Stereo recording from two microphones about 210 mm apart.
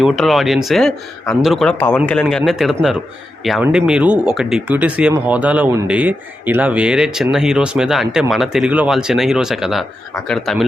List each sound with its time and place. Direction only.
0.0 s speech: centre (ahead or behind)